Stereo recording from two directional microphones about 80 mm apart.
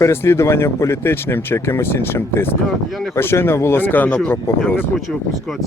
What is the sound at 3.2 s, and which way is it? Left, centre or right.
Speech, left.